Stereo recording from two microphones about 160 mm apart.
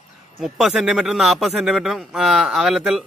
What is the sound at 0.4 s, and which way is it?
Speech, 5° right (ahead or behind).